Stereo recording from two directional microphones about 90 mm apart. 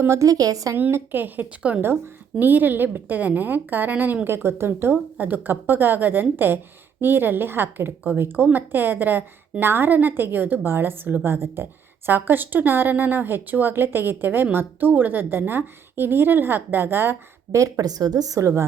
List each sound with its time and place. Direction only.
0.0 s a woman's voice: 35° right (ahead or behind)
0.8 s a woman's voice: 25° right (ahead or behind)
17.6 s a woman's voice: 45° right (ahead or behind)